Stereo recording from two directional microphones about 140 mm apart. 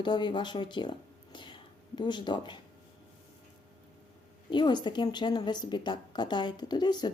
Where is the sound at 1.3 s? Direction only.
35° left (ahead or behind).